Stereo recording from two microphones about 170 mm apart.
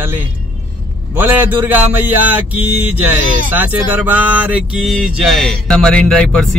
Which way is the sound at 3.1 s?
10° right (ahead or behind).